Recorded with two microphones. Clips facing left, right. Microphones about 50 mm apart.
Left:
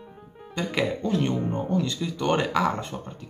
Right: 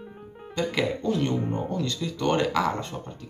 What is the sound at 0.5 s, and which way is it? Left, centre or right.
Speech, centre.